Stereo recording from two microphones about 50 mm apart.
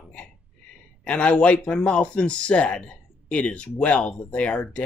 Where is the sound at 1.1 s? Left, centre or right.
Left.